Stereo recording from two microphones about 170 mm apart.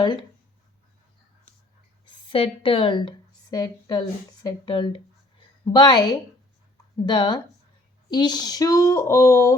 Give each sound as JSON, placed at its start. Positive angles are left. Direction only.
{"t": 0.0, "sound": "speech", "side_deg": 25}
{"t": 2.2, "sound": "speech", "side_deg": 30}